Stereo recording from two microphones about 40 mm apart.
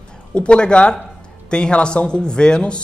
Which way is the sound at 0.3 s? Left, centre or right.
Left.